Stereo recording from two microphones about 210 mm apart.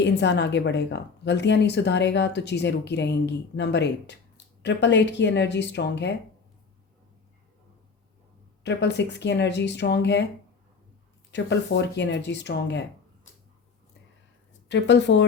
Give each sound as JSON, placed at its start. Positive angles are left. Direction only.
{"t": 0.0, "sound": "speech", "side_deg": 55}
{"t": 8.6, "sound": "speech", "side_deg": 55}
{"t": 11.3, "sound": "speech", "side_deg": 55}
{"t": 14.7, "sound": "speech", "side_deg": 60}